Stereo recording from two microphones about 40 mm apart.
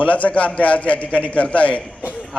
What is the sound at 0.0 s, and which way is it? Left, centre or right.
A man's voice, left.